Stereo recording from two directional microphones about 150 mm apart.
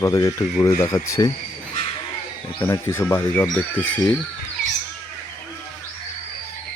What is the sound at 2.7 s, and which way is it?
Speech, 15° left (ahead or behind).